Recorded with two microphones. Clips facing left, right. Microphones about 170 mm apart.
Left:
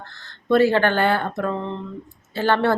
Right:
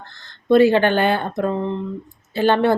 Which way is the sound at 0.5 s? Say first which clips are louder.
Right 3 dB; 15° right (ahead or behind).